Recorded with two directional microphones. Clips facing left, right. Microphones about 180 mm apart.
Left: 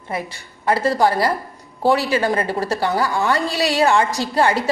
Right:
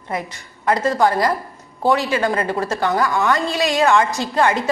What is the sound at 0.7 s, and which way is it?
A woman's voice, 35° left (ahead or behind).